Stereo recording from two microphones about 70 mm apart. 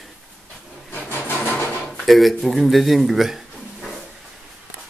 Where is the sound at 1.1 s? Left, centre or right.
Left.